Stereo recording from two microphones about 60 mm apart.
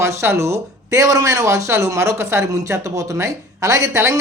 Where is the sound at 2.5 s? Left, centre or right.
Right.